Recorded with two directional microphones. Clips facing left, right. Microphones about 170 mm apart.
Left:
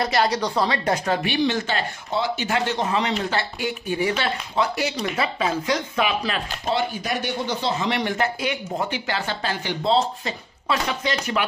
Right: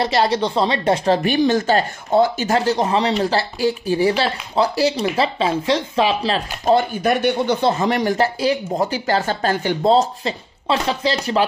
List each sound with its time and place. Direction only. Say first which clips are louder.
0.0 s speech: right 4 dB; 25° right (ahead or behind)
6.6 s speech: right 9 dB; 50° right (ahead or behind)
10.2 s speech: right 5 dB; 30° right (ahead or behind)